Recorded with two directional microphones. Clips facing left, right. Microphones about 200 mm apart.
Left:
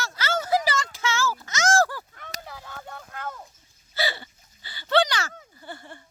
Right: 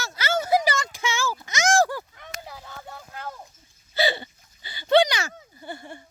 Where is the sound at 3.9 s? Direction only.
20° right (ahead or behind).